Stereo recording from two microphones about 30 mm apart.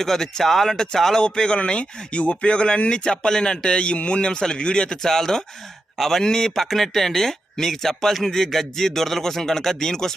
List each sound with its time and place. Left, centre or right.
0.0 s speech: centre
1.2 s a man's voice: left
5.0 s speech: centre
6.2 s a man's voice: centre
6.6 s speech: centre